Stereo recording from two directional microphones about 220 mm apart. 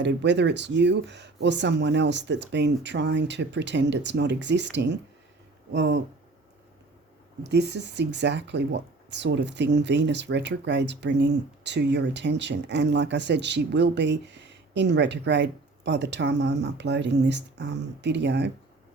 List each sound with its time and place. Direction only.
0.0 s speech: 50° right (ahead or behind)
7.4 s speech: 50° right (ahead or behind)